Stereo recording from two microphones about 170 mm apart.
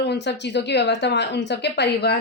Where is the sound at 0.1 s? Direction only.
90° left.